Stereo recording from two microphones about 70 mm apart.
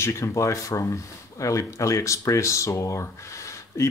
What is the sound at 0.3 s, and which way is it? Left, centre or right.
Speech, left.